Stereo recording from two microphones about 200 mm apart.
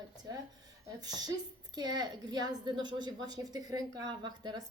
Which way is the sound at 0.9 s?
20° right (ahead or behind).